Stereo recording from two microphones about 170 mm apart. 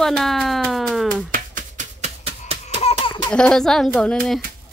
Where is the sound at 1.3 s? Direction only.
50° right (ahead or behind).